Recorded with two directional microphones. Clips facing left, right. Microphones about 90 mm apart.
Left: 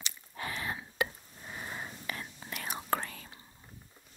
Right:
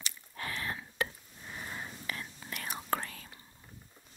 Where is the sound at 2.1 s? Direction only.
25° left (ahead or behind).